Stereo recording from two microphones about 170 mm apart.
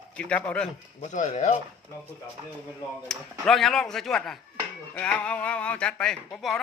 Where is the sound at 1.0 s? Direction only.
50° left (ahead or behind).